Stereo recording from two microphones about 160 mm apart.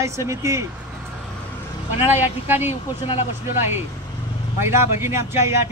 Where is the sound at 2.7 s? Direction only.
40° left (ahead or behind).